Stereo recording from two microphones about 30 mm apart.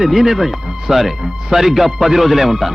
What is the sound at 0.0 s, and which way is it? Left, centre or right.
A man's voice, centre.